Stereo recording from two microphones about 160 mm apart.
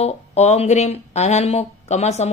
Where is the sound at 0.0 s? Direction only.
40° left (ahead or behind).